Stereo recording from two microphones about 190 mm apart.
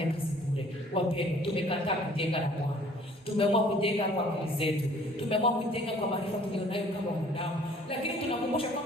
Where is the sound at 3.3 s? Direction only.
30° left (ahead or behind).